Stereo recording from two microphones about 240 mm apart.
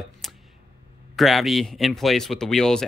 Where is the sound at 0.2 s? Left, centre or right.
Centre.